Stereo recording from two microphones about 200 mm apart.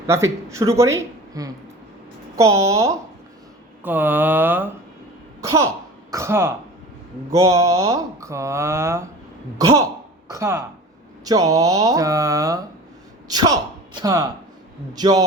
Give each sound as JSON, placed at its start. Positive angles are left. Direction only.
{"t": 0.1, "sound": "a man's voice", "side_deg": -15}